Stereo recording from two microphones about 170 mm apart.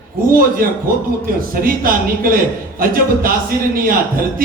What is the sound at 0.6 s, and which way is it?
A man's voice, 55° right (ahead or behind).